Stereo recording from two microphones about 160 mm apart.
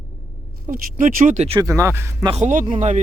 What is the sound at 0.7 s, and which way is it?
Speech, 55° right (ahead or behind).